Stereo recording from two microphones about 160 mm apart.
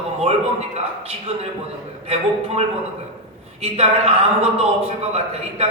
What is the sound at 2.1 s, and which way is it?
A man's voice, 40° right (ahead or behind).